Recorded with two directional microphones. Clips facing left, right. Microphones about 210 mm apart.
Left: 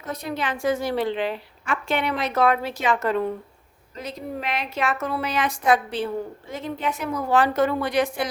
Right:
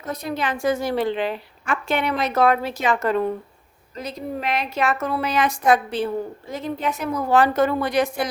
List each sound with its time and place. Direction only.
0.0 s a woman's voice: 40° right (ahead or behind)